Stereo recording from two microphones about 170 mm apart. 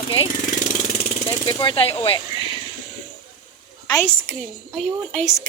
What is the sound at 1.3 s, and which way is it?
Speech, 25° left (ahead or behind).